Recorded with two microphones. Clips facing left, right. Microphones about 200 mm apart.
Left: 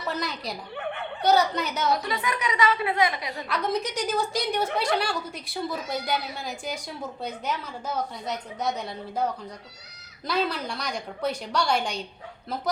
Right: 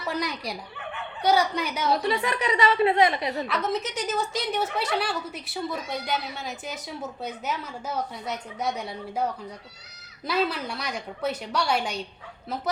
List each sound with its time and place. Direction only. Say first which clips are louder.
0.1 s a woman's voice: right 2 dB; 10° right (ahead or behind)
1.9 s a woman's voice: right 6 dB; 30° right (ahead or behind)
3.4 s a woman's voice: even; centre (ahead or behind)